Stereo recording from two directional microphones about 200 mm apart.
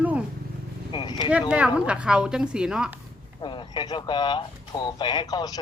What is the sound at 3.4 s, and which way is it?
Speech, 25° left (ahead or behind).